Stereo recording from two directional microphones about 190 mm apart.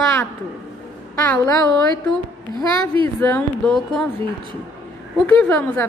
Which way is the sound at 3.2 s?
10° left (ahead or behind).